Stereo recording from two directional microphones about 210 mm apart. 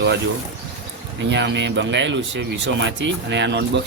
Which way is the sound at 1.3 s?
55° right (ahead or behind).